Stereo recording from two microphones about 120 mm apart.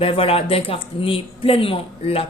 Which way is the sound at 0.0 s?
50° left (ahead or behind).